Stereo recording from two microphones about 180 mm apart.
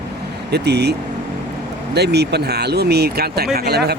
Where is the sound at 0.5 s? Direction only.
65° right (ahead or behind).